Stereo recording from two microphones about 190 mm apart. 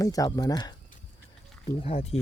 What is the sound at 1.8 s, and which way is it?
Speech, 30° left (ahead or behind).